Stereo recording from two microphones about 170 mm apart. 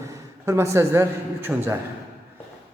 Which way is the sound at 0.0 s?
15° right (ahead or behind).